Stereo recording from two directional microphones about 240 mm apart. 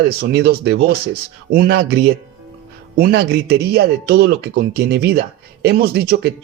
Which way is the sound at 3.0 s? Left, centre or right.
Right.